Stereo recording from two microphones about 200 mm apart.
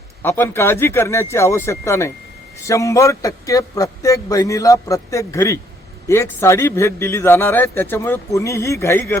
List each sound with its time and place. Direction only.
0.2 s a man's voice: 10° left (ahead or behind)